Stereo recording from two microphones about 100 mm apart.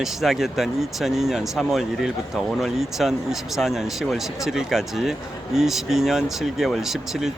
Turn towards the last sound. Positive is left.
turn(degrees=-5)  # may be behind; listen again after turning